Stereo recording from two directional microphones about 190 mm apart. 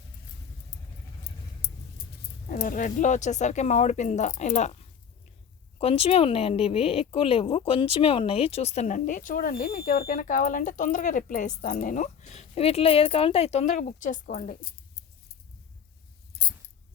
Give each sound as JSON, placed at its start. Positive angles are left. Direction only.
{"t": 1.6, "sound": "keys jangling", "side_deg": 55}
{"t": 2.5, "sound": "speech", "side_deg": 45}
{"t": 5.8, "sound": "speech", "side_deg": 30}